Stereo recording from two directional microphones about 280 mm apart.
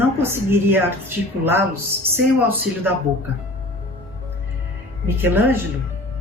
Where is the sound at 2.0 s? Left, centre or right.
Centre.